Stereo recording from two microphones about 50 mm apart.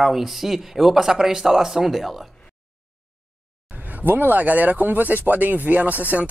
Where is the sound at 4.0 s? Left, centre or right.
Right.